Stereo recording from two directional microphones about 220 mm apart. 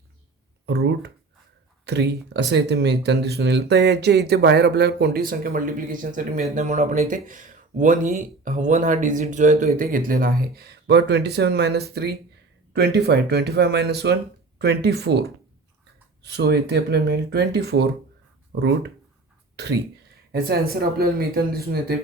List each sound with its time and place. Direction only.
0.6 s a sound: 45° right (ahead or behind)
1.8 s speech: 50° right (ahead or behind)
16.2 s speech: 50° right (ahead or behind)
20.3 s speech: 45° right (ahead or behind)